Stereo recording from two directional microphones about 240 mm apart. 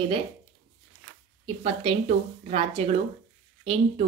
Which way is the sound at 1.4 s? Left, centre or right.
Right.